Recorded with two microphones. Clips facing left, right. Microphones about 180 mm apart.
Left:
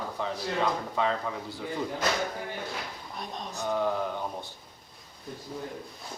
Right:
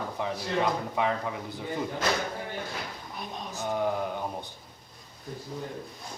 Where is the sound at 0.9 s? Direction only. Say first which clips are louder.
Even; 15° right (ahead or behind).